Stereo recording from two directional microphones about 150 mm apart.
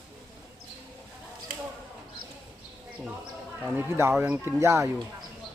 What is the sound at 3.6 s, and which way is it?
Speech, 15° right (ahead or behind).